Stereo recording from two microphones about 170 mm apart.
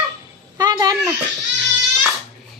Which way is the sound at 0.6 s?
25° right (ahead or behind).